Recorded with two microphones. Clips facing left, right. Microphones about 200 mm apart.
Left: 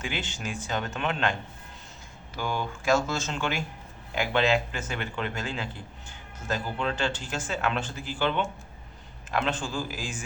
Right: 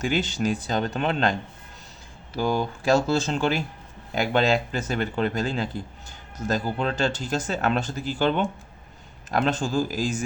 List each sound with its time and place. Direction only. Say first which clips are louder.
0.0 s speech: right 10 dB; 40° right (ahead or behind)